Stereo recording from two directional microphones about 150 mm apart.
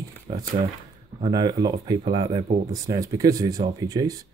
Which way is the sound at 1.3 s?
25° right (ahead or behind).